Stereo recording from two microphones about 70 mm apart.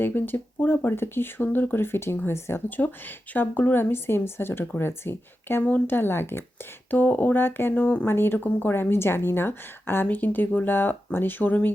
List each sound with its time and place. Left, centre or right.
0.0 s a woman's voice: left
7.7 s speech: centre
8.0 s a woman's voice: left